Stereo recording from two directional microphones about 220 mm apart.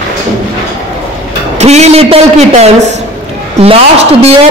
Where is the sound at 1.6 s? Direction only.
30° right (ahead or behind).